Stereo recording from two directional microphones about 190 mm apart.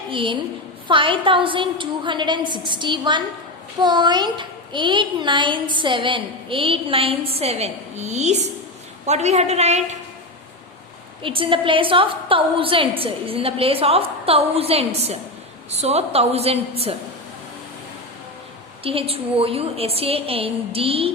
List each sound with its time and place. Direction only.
0.1 s a woman's voice: 25° right (ahead or behind)
11.2 s a child's voice: 25° right (ahead or behind)
18.8 s a child's voice: 30° right (ahead or behind)